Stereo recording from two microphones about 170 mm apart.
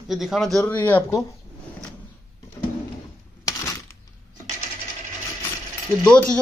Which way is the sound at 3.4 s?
20° left (ahead or behind).